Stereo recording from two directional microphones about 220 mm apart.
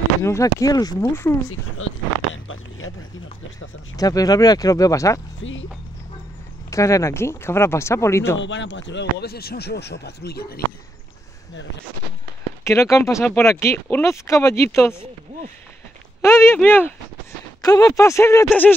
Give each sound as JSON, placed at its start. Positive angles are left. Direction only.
{"t": 0.2, "sound": "speech", "side_deg": 15}
{"t": 1.8, "sound": "speech", "side_deg": 65}
{"t": 2.3, "sound": "a sound", "side_deg": 65}
{"t": 3.9, "sound": "speech", "side_deg": 15}
{"t": 5.4, "sound": "music", "side_deg": 60}
{"t": 6.7, "sound": "speech", "side_deg": 15}
{"t": 8.4, "sound": "speech", "side_deg": 55}
{"t": 12.6, "sound": "speech", "side_deg": 15}
{"t": 16.2, "sound": "speech", "side_deg": 10}